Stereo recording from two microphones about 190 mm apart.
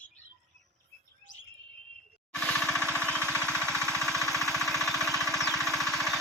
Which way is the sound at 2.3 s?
5° left (ahead or behind).